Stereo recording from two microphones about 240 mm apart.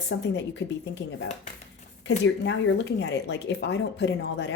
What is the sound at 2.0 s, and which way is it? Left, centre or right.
Speech, left.